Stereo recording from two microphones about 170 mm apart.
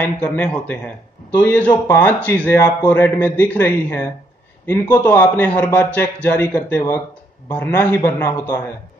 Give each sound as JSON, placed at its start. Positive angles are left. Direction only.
{"t": 0.0, "sound": "a man's voice", "side_deg": 10}
{"t": 5.0, "sound": "a man's voice", "side_deg": 10}